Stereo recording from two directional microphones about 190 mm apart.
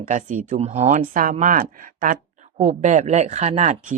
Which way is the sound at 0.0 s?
40° right (ahead or behind).